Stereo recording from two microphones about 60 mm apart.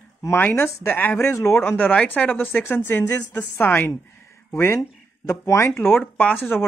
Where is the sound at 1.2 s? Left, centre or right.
Left.